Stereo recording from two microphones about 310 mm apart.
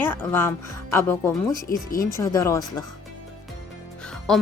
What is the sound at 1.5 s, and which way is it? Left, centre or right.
Speech, left.